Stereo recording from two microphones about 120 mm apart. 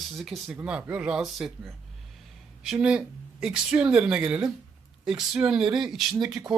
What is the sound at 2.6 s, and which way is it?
A man's voice, 10° right (ahead or behind).